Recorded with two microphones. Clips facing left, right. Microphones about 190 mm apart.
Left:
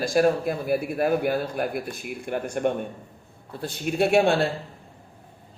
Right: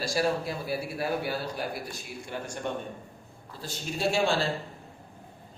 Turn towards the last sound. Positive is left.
turn(degrees=60)  # may be behind; listen again after turning